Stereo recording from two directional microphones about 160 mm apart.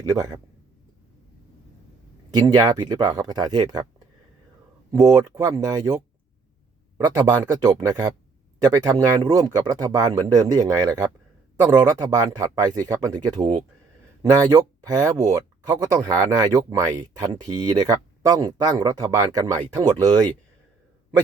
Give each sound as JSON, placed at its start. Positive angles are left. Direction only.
{"t": 0.0, "sound": "speech", "side_deg": -20}
{"t": 2.3, "sound": "speech", "side_deg": -25}
{"t": 4.9, "sound": "speech", "side_deg": -20}
{"t": 7.0, "sound": "speech", "side_deg": -25}